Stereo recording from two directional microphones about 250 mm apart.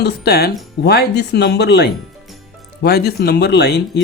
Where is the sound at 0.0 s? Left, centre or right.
Left.